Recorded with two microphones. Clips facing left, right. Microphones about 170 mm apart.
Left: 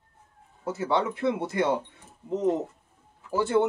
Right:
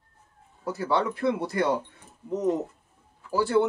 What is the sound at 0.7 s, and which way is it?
Speech, 25° left (ahead or behind).